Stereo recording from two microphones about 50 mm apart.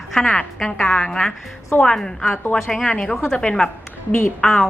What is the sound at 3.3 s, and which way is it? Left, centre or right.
A woman's voice, centre.